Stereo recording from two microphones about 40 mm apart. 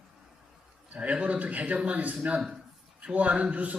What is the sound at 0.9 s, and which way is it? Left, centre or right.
A man's voice, right.